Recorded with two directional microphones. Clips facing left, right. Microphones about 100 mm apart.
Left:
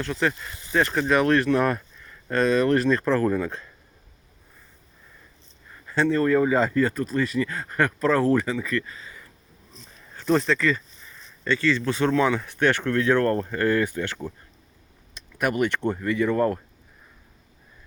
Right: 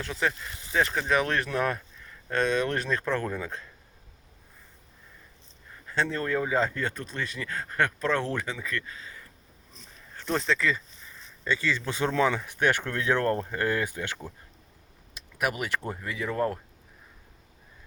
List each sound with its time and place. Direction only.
0.0 s speech: centre (ahead or behind)
5.9 s speech: 5° left (ahead or behind)
10.3 s speech: centre (ahead or behind)